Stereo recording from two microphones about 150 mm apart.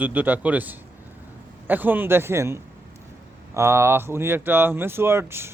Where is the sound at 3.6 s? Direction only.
15° right (ahead or behind).